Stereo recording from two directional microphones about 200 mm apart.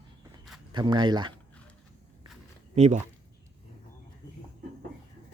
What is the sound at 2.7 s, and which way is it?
Speech, 35° right (ahead or behind).